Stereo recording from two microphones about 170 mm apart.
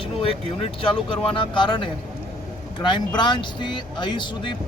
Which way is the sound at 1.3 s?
30° left (ahead or behind).